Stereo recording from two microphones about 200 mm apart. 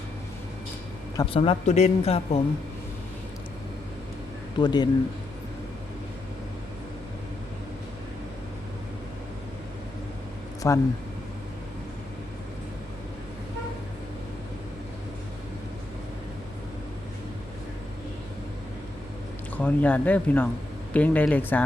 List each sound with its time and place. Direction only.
1.1 s speech: 25° left (ahead or behind)
4.5 s speech: 20° left (ahead or behind)
10.6 s speech: 15° left (ahead or behind)
19.5 s speech: 10° left (ahead or behind)